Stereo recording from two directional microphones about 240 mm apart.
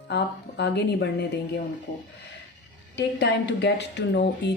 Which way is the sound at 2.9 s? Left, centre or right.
Left.